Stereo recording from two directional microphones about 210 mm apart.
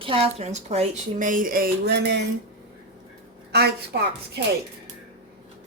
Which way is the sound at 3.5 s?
50° right (ahead or behind).